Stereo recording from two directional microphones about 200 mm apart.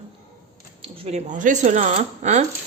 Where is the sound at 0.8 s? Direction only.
30° right (ahead or behind).